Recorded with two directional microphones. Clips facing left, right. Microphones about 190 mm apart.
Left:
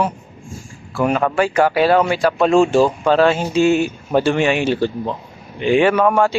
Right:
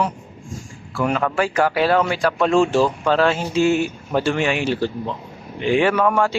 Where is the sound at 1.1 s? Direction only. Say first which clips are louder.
Left 3 dB; 20° left (ahead or behind).